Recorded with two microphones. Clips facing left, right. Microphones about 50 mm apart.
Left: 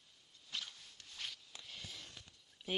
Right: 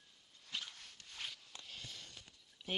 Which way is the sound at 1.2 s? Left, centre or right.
Centre.